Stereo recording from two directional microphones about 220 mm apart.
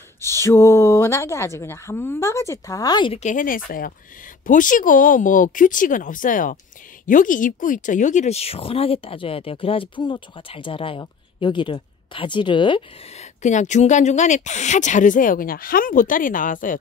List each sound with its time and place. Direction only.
0.2 s speech: 10° left (ahead or behind); by 16.7 s 40° left (ahead or behind)